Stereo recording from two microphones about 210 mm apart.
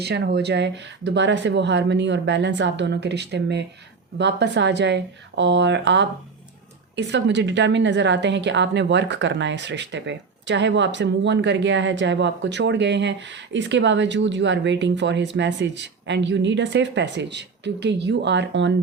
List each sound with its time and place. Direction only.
0.0 s a woman's voice: 50° right (ahead or behind)